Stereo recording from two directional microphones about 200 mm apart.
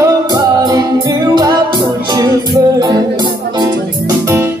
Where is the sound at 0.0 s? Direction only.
20° right (ahead or behind).